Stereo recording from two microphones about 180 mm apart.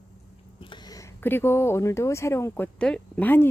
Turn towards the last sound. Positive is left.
turn(degrees=10)  # may be behind; listen again after turning